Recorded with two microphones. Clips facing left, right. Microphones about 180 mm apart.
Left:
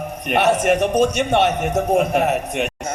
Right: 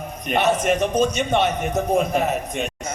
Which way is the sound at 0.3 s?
70° left (ahead or behind).